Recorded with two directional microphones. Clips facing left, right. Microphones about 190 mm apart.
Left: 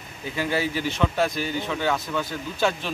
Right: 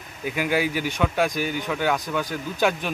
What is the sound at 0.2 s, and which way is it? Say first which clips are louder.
Speech: right 2 dB; 15° right (ahead or behind).